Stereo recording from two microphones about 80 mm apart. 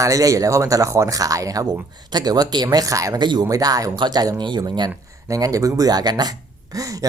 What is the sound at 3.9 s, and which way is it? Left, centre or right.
Speech, right.